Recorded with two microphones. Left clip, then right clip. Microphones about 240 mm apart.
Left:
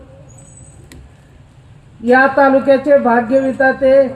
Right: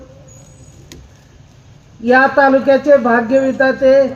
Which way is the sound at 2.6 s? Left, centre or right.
Right.